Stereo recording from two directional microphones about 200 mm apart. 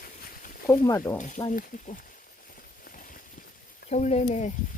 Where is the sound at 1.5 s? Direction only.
40° left (ahead or behind).